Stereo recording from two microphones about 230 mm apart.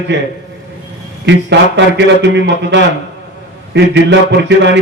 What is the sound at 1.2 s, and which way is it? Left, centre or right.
A man's voice, right.